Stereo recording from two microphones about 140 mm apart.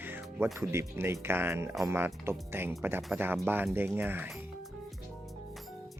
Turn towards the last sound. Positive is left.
turn(degrees=-15)  # may be behind; listen again after turning